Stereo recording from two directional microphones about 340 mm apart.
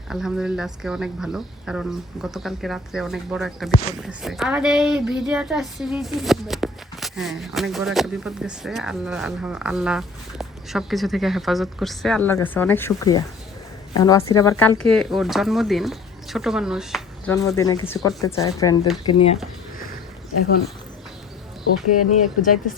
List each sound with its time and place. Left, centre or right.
0.1 s speech: centre
21.8 s speech: left